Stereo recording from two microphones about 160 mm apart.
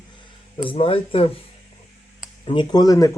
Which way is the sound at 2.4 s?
30° left (ahead or behind).